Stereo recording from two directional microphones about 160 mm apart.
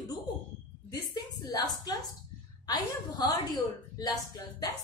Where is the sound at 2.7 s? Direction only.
25° left (ahead or behind).